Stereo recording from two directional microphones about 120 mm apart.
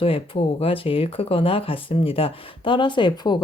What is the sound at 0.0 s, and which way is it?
Speech, 50° left (ahead or behind).